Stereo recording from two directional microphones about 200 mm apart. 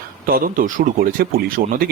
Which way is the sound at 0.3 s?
45° right (ahead or behind).